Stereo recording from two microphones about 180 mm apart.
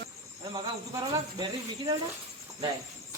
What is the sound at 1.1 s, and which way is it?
Speech, 25° right (ahead or behind).